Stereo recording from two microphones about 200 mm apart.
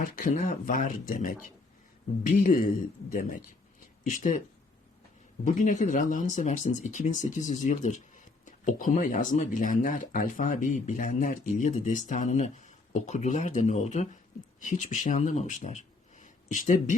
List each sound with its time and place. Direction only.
0.0 s speech: 45° left (ahead or behind)
5.5 s speech: 40° left (ahead or behind)
16.2 s a sound: 40° left (ahead or behind)